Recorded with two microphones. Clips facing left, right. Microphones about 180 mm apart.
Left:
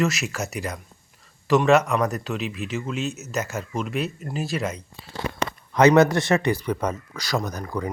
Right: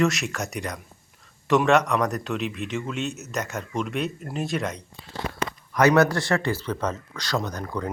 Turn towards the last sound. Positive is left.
turn(degrees=5)  # may be behind; listen again after turning